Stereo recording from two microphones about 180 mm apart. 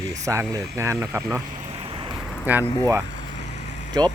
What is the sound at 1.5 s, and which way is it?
Vehicle, 30° right (ahead or behind).